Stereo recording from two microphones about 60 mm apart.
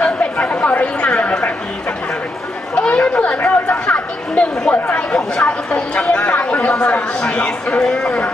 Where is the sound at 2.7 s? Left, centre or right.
Centre.